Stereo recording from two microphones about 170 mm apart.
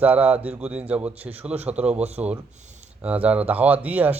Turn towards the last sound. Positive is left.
turn(degrees=-10)  # may be behind; listen again after turning